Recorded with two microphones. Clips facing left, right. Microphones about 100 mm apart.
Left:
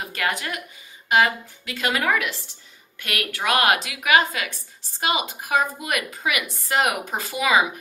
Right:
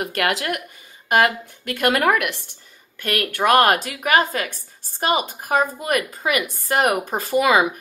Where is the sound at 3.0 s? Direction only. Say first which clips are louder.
Right 7 dB; 45° right (ahead or behind).